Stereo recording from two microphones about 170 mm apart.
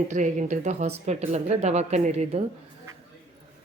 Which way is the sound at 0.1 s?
45° right (ahead or behind).